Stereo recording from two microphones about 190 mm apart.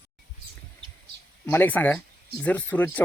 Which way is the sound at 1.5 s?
10° left (ahead or behind).